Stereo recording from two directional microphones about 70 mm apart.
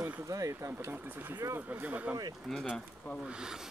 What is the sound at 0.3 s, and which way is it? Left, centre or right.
Speech, right.